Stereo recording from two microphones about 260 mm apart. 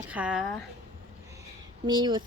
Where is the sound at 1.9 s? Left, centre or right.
Centre.